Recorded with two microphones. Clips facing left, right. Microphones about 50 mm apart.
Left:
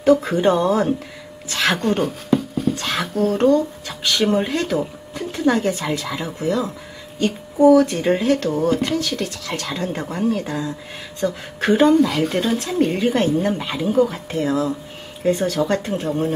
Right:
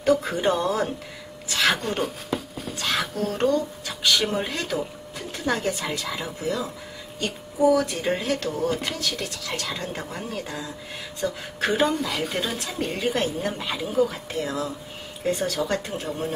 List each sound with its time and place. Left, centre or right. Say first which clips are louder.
0.0 s speech: left 6 dB; centre
8.0 s speech: left 7 dB; centre